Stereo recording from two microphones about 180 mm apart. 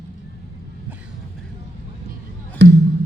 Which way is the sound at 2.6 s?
80° right.